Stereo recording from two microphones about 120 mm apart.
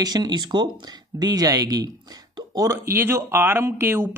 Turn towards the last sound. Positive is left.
turn(degrees=-20)  # may be behind; listen again after turning